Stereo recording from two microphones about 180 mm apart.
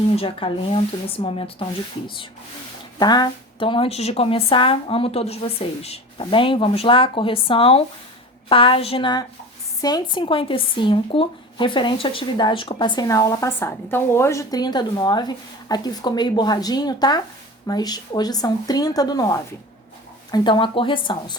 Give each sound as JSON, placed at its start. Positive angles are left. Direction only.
{"t": 0.2, "sound": "a woman's voice", "side_deg": 30}
{"t": 3.0, "sound": "a woman's voice", "side_deg": 25}